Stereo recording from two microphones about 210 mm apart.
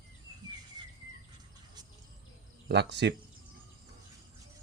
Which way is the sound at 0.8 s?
20° right (ahead or behind).